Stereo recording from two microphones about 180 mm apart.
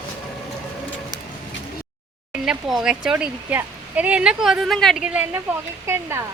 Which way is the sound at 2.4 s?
5° right (ahead or behind).